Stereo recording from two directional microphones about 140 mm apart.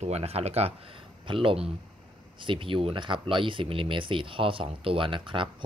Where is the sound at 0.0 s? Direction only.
50° right (ahead or behind).